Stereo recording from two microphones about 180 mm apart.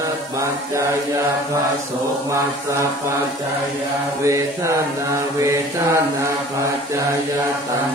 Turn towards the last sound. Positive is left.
turn(degrees=-15)  # may be behind; listen again after turning